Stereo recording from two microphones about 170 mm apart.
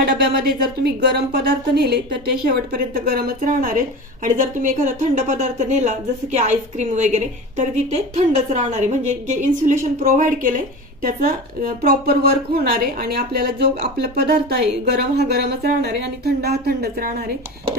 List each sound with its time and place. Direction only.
0.0 s a woman's voice: 70° right (ahead or behind)